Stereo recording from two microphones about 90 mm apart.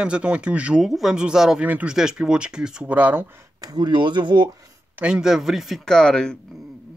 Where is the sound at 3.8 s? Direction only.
60° right (ahead or behind).